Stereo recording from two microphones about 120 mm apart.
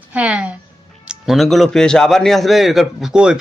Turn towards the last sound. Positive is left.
turn(degrees=-5)  # may be behind; listen again after turning